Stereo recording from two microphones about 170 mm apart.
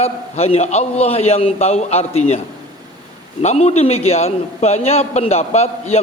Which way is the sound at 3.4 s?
40° left (ahead or behind).